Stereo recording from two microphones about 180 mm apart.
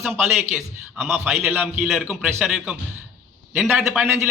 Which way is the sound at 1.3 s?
10° right (ahead or behind).